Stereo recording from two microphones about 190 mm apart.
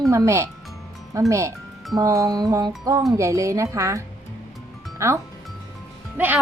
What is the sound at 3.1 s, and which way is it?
Speech, 15° right (ahead or behind).